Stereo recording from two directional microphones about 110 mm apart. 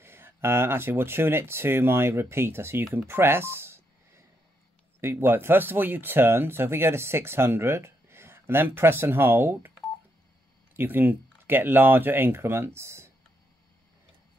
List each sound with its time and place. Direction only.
0.0 s speech: 20° right (ahead or behind)
2.9 s telephone dialing: 20° right (ahead or behind)
5.0 s speech: 20° right (ahead or behind)
10.8 s speech: 20° right (ahead or behind)